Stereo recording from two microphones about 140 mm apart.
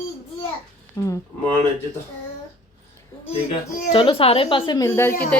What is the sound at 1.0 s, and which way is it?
Speech, 20° left (ahead or behind).